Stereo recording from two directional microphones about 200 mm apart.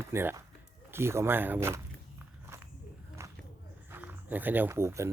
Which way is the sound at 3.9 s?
10° right (ahead or behind).